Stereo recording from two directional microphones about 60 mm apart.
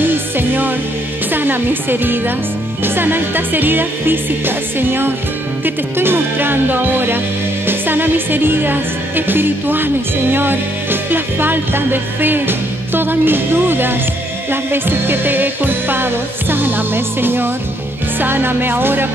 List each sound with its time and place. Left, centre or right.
0.0 s music: right